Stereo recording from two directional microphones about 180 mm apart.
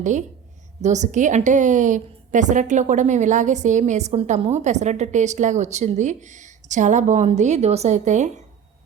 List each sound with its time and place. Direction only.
0.0 s a woman's voice: 40° right (ahead or behind)